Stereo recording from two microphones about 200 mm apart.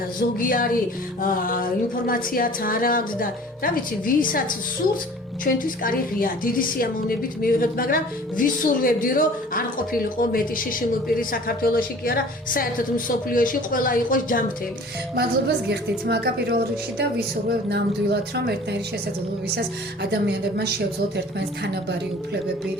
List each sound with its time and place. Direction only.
0.3 s a woman's voice: 45° left (ahead or behind)
5.5 s a woman's voice: 45° left (ahead or behind)
15.1 s a woman's voice: 55° right (ahead or behind)